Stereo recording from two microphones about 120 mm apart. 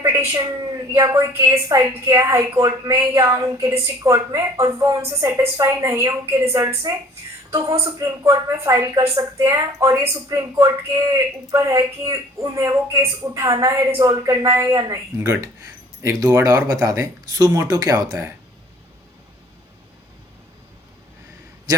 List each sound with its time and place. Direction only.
0.0 s a woman's voice: 30° right (ahead or behind)